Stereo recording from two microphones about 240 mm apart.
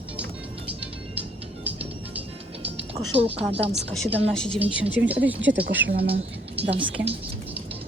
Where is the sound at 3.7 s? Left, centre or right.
Centre.